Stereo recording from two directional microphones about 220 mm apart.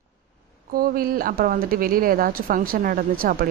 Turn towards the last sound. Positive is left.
turn(degrees=-40)  # may be behind; listen again after turning